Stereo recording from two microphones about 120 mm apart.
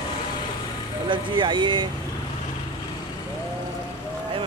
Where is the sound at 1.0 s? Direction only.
40° right (ahead or behind).